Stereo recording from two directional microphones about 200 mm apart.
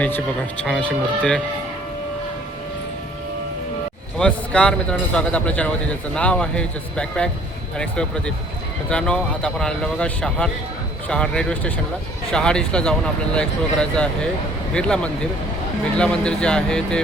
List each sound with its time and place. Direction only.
0.6 s speech: 5° left (ahead or behind)
4.2 s speech: 5° left (ahead or behind)